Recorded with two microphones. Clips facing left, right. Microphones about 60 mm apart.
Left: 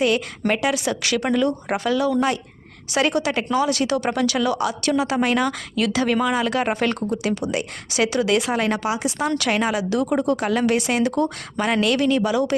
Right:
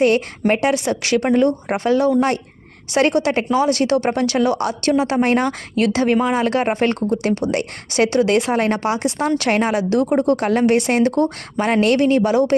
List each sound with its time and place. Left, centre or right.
0.5 s speech: right
4.5 s speech: right
4.9 s speech: right
6.4 s speech: right